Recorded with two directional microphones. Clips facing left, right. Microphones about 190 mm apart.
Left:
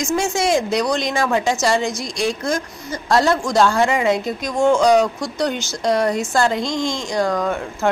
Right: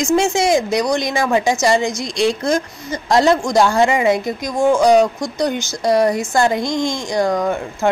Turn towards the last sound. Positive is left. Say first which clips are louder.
# right 2 dB
turn(degrees=-15)  # may be behind; listen again after turning